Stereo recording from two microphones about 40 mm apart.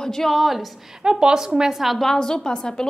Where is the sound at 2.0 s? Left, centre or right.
Centre.